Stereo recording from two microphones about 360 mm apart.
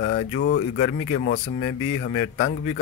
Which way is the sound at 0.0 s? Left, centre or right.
Left.